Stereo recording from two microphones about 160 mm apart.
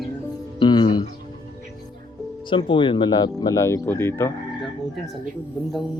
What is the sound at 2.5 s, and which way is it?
Speech, 30° left (ahead or behind).